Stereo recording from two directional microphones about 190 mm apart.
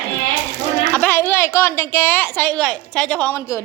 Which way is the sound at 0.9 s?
10° left (ahead or behind).